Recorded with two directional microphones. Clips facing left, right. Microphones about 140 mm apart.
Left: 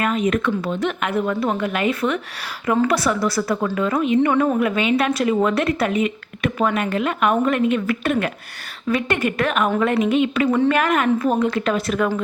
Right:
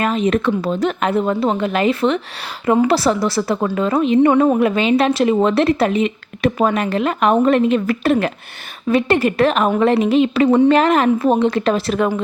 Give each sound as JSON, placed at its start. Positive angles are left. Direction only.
{"t": 0.0, "sound": "a woman's voice", "side_deg": -30}